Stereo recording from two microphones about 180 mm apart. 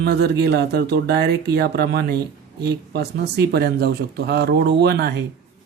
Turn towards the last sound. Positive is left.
turn(degrees=-65)  # may be behind; listen again after turning